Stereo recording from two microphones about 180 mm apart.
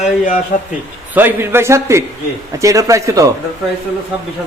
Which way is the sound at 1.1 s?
10° right (ahead or behind).